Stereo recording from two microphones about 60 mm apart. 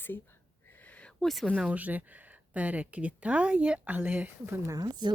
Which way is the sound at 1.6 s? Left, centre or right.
Right.